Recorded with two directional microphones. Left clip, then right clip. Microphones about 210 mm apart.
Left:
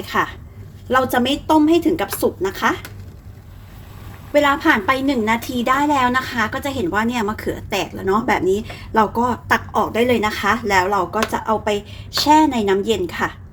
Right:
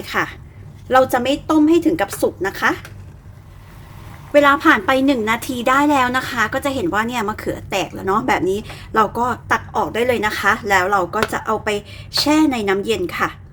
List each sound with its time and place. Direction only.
0.0 s a woman's voice: 10° right (ahead or behind)
4.3 s a woman's voice: 15° right (ahead or behind)